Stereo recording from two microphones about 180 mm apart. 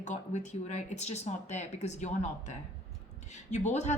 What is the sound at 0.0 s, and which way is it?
Speech, 40° left (ahead or behind).